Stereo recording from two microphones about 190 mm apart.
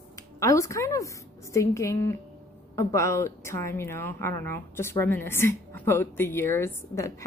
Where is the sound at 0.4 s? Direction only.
15° left (ahead or behind).